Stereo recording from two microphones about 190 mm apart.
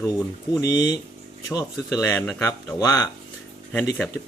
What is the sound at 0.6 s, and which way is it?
Speech, 15° left (ahead or behind).